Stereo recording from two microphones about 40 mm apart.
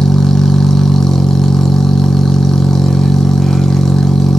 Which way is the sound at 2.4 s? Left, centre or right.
Centre.